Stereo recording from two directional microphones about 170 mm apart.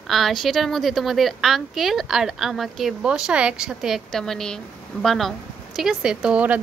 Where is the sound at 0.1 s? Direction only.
Centre (ahead or behind).